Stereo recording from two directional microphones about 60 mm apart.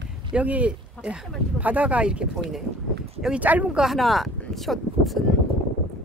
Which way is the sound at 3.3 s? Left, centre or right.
Right.